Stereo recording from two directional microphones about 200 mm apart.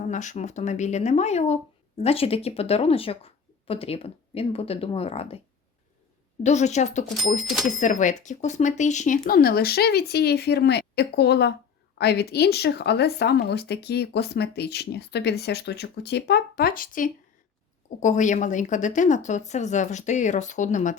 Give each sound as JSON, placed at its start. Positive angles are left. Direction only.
{"t": 0.0, "sound": "a woman's voice", "side_deg": 40}
{"t": 6.4, "sound": "a woman's voice", "side_deg": 35}
{"t": 7.4, "sound": "speech", "side_deg": 0}
{"t": 7.8, "sound": "a woman's voice", "side_deg": 40}